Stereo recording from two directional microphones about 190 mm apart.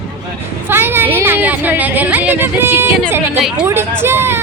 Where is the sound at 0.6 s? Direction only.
10° right (ahead or behind).